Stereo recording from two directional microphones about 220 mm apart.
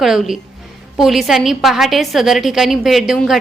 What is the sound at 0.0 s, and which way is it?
A woman's voice, centre (ahead or behind).